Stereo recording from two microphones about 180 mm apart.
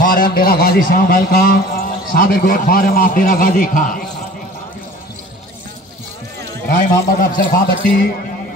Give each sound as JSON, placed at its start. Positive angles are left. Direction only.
{"t": 0.0, "sound": "a man's voice", "side_deg": 50}
{"t": 7.2, "sound": "a man's voice", "side_deg": 50}